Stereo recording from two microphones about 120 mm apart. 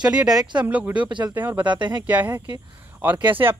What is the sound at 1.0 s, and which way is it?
Speech, 40° right (ahead or behind).